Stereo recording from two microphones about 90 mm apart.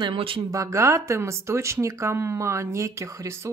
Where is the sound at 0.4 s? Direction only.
35° right (ahead or behind).